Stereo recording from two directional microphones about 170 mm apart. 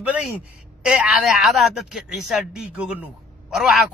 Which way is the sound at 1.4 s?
Centre (ahead or behind).